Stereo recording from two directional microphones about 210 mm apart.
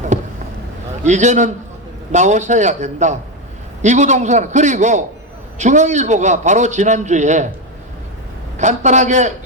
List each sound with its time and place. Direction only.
0.1 s vehicle: 35° right (ahead or behind)
1.0 s a man's voice: 35° right (ahead or behind)
8.5 s a man's voice: 35° right (ahead or behind)